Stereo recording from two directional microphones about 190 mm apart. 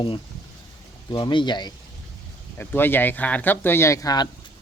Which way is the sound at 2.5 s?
10° left (ahead or behind).